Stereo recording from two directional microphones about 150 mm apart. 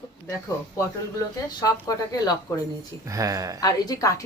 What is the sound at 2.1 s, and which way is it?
Speech, 25° left (ahead or behind).